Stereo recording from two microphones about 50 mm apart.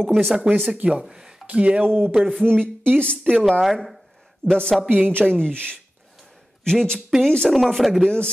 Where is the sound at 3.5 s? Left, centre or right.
Centre.